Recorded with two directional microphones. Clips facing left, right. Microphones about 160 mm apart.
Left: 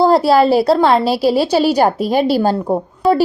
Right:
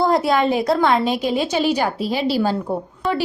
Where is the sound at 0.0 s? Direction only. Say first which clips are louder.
Left 6 dB; 35° left (ahead or behind).